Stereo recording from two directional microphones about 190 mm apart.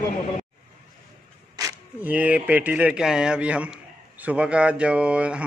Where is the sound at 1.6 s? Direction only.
10° right (ahead or behind).